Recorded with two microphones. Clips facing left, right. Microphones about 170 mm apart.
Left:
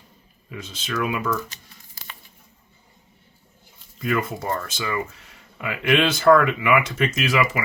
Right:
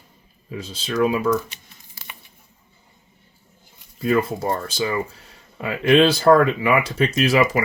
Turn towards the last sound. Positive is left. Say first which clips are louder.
# right 5 dB
turn(degrees=-40)  # may be behind; listen again after turning